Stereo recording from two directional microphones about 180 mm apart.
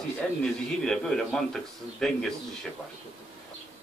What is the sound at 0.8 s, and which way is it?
A man's voice, 5° left (ahead or behind).